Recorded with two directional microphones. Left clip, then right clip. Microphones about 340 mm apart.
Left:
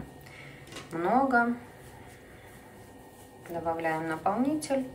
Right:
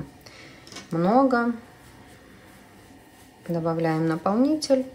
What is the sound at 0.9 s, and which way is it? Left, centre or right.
Speech, centre.